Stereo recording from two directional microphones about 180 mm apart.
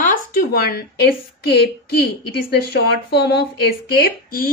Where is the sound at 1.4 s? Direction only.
65° left (ahead or behind).